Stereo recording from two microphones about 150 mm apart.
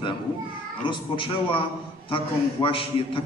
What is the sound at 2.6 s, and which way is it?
Speech, 35° left (ahead or behind).